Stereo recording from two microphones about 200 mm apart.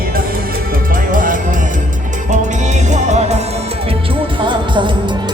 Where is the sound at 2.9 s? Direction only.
35° right (ahead or behind).